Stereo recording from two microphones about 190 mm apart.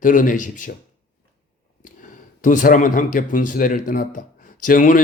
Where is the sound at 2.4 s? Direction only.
45° left (ahead or behind).